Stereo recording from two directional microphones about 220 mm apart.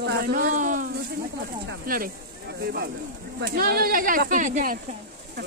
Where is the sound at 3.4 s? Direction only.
40° right (ahead or behind).